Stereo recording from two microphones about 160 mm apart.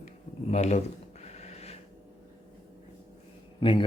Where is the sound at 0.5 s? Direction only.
45° left (ahead or behind).